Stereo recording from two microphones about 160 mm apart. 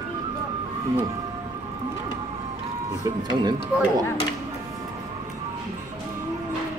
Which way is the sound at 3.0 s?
25° right (ahead or behind).